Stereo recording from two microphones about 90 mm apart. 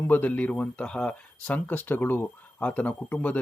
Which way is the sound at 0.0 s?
20° left (ahead or behind).